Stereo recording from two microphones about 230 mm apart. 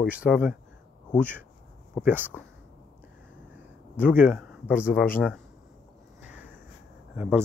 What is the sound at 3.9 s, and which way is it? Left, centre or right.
Speech, centre.